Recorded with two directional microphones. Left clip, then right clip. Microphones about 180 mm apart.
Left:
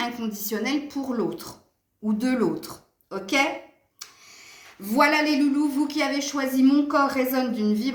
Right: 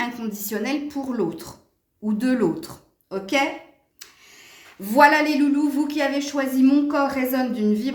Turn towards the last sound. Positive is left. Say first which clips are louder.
# right 1 dB
turn(degrees=-40)  # may be behind; listen again after turning